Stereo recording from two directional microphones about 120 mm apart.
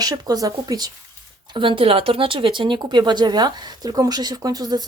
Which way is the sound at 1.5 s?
45° right (ahead or behind).